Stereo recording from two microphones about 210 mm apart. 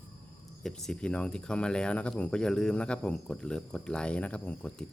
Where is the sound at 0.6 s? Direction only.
Centre (ahead or behind).